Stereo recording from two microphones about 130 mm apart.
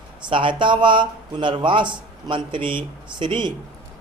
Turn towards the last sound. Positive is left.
turn(degrees=-35)  # may be behind; listen again after turning